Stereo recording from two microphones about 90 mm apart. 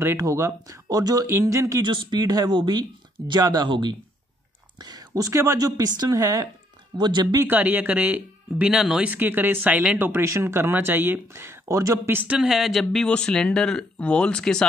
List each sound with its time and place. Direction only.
0.2 s a woman's voice: 40° right (ahead or behind)
1.9 s speech: 60° right (ahead or behind)
3.6 s speech: 65° right (ahead or behind)
4.7 s a woman's voice: 45° right (ahead or behind)
7.0 s speech: 60° right (ahead or behind)
7.4 s speech: 15° right (ahead or behind)
9.1 s speech: 20° right (ahead or behind)
12.4 s speech: 5° right (ahead or behind)